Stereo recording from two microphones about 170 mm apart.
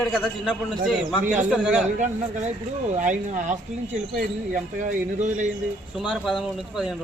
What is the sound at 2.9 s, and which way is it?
Speech, 45° right (ahead or behind).